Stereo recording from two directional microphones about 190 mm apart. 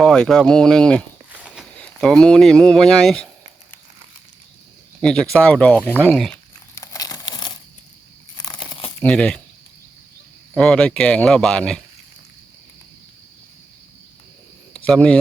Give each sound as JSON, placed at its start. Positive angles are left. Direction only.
{"t": 0.0, "sound": "speech", "side_deg": 5}
{"t": 4.9, "sound": "speech", "side_deg": 0}
{"t": 6.7, "sound": "crumpling", "side_deg": 20}
{"t": 9.0, "sound": "speech", "side_deg": 5}
{"t": 10.5, "sound": "speech", "side_deg": 5}
{"t": 14.8, "sound": "speech", "side_deg": 5}